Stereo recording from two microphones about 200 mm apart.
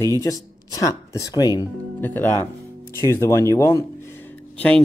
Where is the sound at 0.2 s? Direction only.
15° left (ahead or behind).